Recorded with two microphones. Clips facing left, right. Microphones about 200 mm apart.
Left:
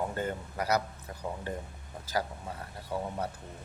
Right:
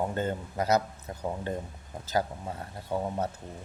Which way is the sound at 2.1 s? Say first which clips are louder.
Right 4 dB; 25° right (ahead or behind).